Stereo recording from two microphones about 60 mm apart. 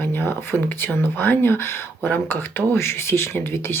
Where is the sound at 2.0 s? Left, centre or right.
Left.